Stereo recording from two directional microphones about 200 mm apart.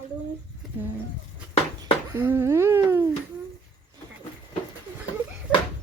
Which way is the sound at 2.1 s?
10° right (ahead or behind).